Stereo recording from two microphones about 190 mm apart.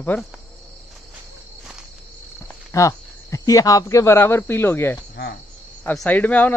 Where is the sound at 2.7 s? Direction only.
15° left (ahead or behind).